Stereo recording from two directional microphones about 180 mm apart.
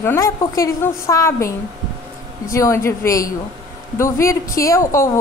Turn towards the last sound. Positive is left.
turn(degrees=15)  # may be behind; listen again after turning